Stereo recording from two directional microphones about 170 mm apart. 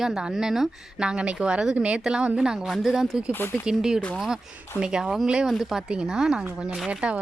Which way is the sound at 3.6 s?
5° right (ahead or behind).